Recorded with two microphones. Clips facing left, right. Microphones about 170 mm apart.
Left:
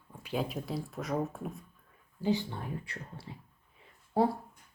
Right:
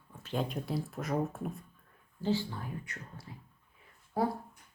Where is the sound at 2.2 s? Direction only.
20° left (ahead or behind).